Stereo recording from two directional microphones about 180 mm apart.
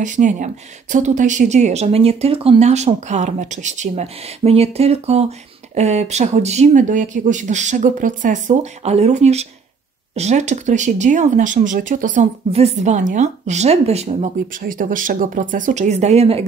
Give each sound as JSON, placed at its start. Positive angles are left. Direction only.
{"t": 0.0, "sound": "speech", "side_deg": -45}
{"t": 14.6, "sound": "speech", "side_deg": -50}